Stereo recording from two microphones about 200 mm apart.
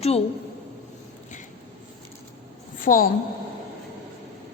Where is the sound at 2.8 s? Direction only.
45° left (ahead or behind).